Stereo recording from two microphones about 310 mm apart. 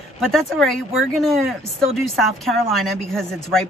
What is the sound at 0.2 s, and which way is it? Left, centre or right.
A woman's voice, centre.